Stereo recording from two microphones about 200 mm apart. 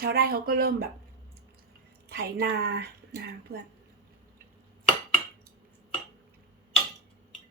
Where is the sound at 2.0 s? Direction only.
50° right (ahead or behind).